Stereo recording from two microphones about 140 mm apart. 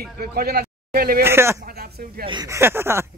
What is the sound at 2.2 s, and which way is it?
Speech, 35° right (ahead or behind).